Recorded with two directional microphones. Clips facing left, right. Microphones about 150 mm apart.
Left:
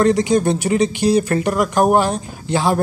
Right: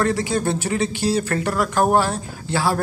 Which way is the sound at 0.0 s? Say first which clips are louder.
Left 6 dB; 20° left (ahead or behind).